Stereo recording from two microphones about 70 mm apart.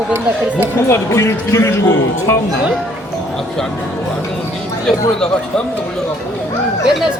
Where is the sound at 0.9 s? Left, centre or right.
Left.